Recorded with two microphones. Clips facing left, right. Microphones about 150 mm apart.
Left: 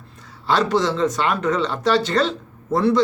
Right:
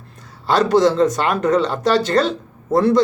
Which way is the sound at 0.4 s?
40° right (ahead or behind).